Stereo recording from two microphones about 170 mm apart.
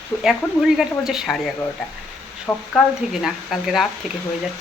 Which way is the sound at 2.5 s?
15° left (ahead or behind).